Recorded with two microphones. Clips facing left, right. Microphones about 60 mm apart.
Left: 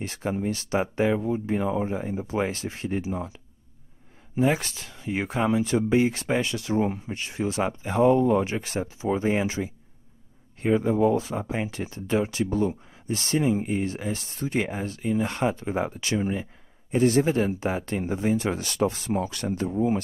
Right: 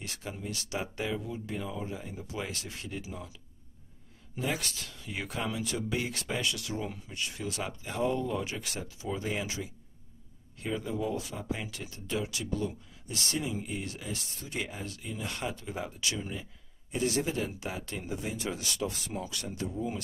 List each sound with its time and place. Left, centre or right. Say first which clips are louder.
0.0 s speech: left 12 dB; left